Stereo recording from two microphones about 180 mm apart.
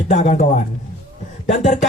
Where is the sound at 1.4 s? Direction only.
40° left (ahead or behind).